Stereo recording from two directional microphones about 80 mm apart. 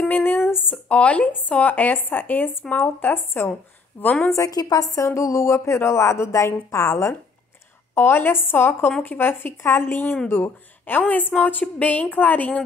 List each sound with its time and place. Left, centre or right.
0.0 s a sound: left
0.8 s speech: centre
4.4 s a woman's voice: left
7.9 s speech: left